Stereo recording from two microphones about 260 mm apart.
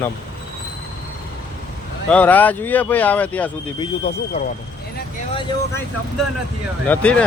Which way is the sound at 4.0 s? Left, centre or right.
Left.